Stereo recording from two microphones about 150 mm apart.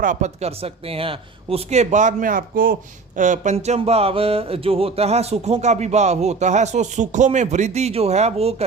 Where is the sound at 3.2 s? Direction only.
55° right (ahead or behind).